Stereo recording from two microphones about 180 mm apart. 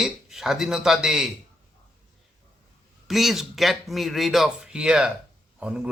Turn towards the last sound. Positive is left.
turn(degrees=-5)  # may be behind; listen again after turning